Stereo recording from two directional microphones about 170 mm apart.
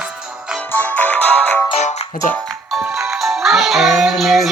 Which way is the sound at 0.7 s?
10° left (ahead or behind).